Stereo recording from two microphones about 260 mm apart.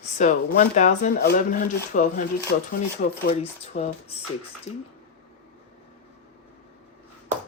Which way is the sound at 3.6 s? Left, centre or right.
Left.